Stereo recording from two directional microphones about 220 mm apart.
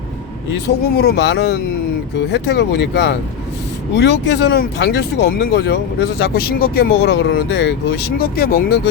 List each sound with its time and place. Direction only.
0.9 s speech: 50° left (ahead or behind)